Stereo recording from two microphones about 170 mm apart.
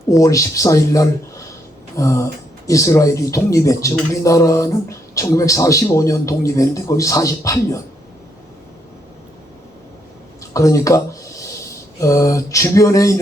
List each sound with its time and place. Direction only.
0.0 s speech: 20° left (ahead or behind)
10.5 s a sound: 20° left (ahead or behind)
11.9 s speech: 20° left (ahead or behind)